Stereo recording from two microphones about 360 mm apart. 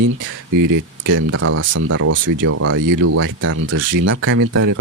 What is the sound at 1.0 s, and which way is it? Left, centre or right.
Speech, right.